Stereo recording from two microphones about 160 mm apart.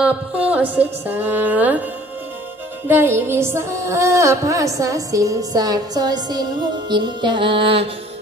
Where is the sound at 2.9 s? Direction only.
15° right (ahead or behind).